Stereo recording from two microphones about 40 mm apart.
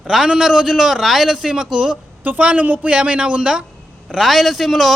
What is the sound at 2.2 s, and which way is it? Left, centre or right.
Speech, right.